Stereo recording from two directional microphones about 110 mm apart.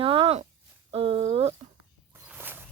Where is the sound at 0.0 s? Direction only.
55° right (ahead or behind).